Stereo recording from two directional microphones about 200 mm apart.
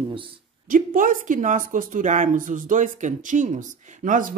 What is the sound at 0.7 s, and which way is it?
Speech, 45° right (ahead or behind).